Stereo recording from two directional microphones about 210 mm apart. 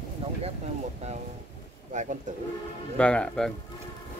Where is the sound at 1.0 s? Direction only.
30° right (ahead or behind).